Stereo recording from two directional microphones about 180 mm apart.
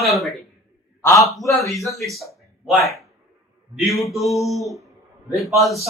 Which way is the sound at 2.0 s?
Centre (ahead or behind).